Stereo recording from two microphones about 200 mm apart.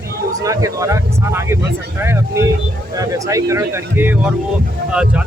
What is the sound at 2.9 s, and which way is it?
Speech, 15° right (ahead or behind).